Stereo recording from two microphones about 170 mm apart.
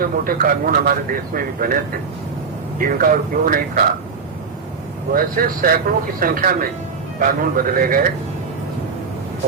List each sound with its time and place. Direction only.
0.0 s speech: 55° right (ahead or behind)
5.1 s speech: 60° right (ahead or behind)